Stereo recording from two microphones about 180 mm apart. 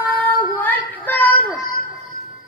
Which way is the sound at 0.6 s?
10° left (ahead or behind).